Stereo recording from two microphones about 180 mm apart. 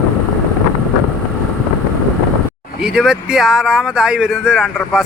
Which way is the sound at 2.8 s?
5° right (ahead or behind).